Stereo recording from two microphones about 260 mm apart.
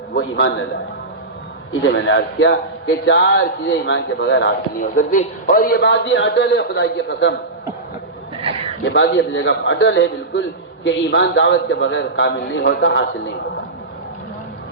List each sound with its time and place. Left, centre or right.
0.2 s a man's voice: left
1.9 s a man's voice: left
4.8 s a man's voice: left
9.0 s a man's voice: left